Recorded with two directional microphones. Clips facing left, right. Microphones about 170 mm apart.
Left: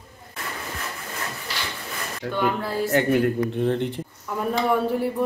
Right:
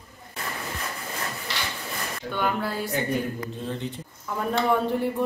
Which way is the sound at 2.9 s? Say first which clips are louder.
Left 11 dB; 70° left (ahead or behind).